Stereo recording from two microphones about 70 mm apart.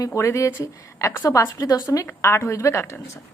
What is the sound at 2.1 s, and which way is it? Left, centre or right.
Speech, left.